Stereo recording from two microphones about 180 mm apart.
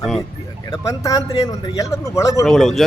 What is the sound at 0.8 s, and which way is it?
A man's voice, 20° left (ahead or behind).